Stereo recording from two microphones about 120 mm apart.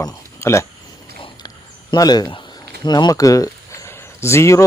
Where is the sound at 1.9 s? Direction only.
35° left (ahead or behind).